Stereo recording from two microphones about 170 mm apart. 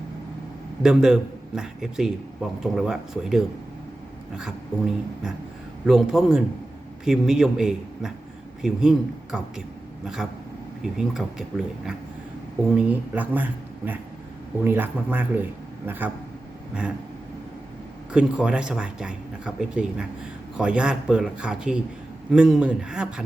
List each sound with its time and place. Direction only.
0.8 s a man's voice: 5° right (ahead or behind)
18.1 s a man's voice: 5° right (ahead or behind)